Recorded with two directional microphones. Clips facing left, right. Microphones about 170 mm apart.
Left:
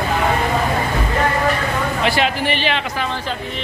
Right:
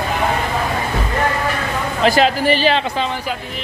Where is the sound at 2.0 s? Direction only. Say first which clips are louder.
Right 7 dB; 40° right (ahead or behind).